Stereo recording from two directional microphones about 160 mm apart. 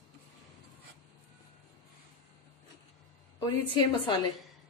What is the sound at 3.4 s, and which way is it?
Speech, 30° left (ahead or behind).